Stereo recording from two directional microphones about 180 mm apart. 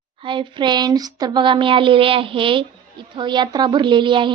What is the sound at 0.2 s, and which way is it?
Speech, 25° right (ahead or behind).